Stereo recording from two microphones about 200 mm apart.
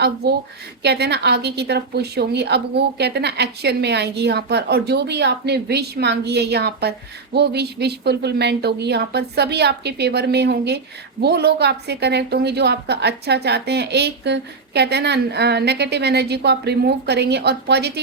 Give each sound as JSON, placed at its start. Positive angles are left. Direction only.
{"t": 0.8, "sound": "a woman's voice", "side_deg": -55}